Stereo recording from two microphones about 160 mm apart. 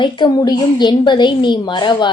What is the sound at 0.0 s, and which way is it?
A woman's voice, 30° left (ahead or behind).